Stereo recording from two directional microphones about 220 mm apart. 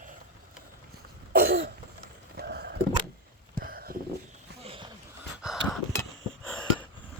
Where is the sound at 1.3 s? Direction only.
45° right (ahead or behind).